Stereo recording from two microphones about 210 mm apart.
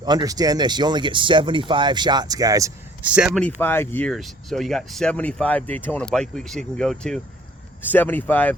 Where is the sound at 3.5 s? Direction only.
10° left (ahead or behind).